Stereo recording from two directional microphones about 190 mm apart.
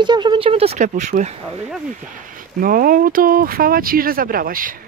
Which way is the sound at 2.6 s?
45° right (ahead or behind).